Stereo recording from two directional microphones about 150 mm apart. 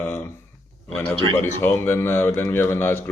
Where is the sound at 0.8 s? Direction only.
5° left (ahead or behind).